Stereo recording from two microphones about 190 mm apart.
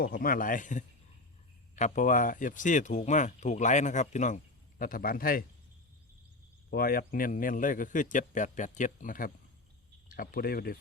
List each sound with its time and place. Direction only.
0.0 s a man's voice: 50° left (ahead or behind)
6.7 s a man's voice: 50° left (ahead or behind)